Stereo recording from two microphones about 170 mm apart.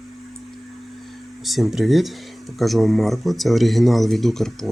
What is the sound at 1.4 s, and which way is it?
Speech, centre (ahead or behind).